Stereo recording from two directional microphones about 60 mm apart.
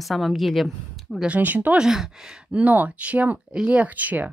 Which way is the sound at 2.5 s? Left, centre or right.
Right.